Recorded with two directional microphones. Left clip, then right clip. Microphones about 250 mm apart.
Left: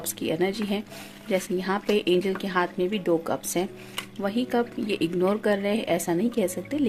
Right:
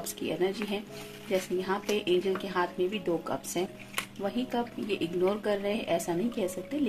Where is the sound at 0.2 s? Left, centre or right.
Left.